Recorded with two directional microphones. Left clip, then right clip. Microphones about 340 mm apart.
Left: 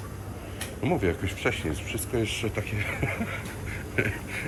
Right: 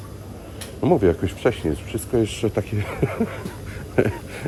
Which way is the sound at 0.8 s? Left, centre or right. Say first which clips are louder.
Right 9 dB; centre.